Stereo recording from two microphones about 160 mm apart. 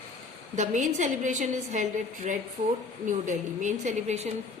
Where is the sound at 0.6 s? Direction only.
50° right (ahead or behind).